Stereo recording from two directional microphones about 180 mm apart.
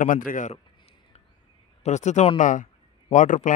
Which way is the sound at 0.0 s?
50° left (ahead or behind).